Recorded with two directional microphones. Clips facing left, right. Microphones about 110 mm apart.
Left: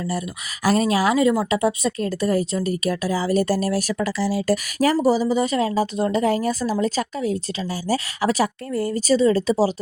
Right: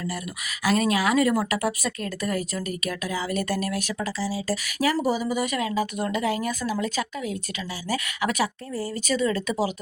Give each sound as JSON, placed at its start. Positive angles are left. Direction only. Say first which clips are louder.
{"t": 0.6, "sound": "speech", "louder": "left 4 dB", "side_deg": 35}
{"t": 1.2, "sound": "speech", "louder": "left 4 dB", "side_deg": 20}
{"t": 4.0, "sound": "speech", "louder": "left 6 dB", "side_deg": 65}
{"t": 4.8, "sound": "speech", "louder": "left 5 dB", "side_deg": 40}